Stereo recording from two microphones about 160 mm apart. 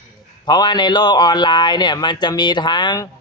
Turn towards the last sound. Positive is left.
turn(degrees=30)  # may be behind; listen again after turning